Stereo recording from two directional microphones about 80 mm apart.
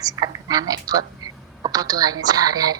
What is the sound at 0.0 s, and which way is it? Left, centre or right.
A woman's voice, right.